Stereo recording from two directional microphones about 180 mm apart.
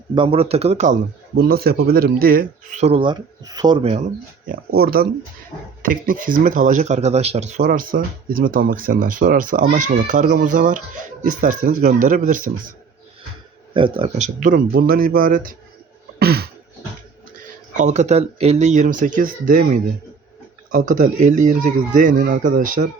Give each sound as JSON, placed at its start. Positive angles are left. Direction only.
{"t": 0.1, "sound": "speech", "side_deg": -30}
{"t": 1.4, "sound": "speech", "side_deg": -60}
{"t": 2.8, "sound": "speech", "side_deg": -30}
{"t": 4.4, "sound": "speech", "side_deg": -55}
{"t": 13.7, "sound": "speech", "side_deg": -30}
{"t": 14.3, "sound": "speech", "side_deg": -50}
{"t": 16.1, "sound": "a sound", "side_deg": -60}
{"t": 17.7, "sound": "speech", "side_deg": -40}